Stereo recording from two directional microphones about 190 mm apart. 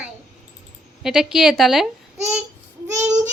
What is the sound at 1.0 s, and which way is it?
Speech, 5° right (ahead or behind).